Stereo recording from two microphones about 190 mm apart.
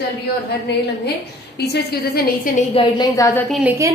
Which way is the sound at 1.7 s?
50° left (ahead or behind).